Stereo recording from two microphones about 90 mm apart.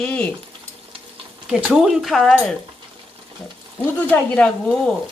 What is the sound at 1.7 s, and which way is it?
Speech, 5° right (ahead or behind).